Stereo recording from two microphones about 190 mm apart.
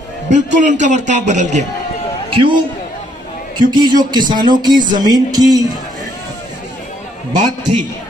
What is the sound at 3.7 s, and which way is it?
Music, 20° right (ahead or behind).